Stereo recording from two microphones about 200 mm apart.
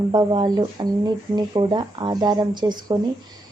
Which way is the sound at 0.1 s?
20° right (ahead or behind).